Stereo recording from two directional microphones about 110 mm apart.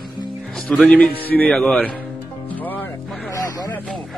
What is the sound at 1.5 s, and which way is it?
Speech, 5° left (ahead or behind).